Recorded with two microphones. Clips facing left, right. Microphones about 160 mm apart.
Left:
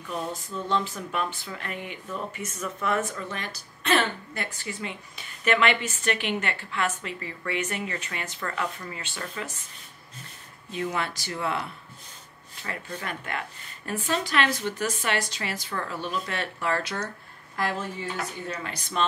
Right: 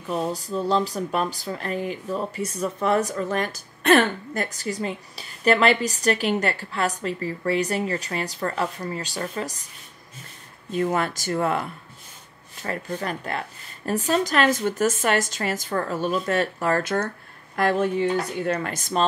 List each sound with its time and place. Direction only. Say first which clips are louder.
0.0 s speech: right 6 dB; 35° right (ahead or behind)
10.7 s a woman's voice: right 6 dB; 45° right (ahead or behind)
12.6 s a woman's voice: right 6 dB; 40° right (ahead or behind)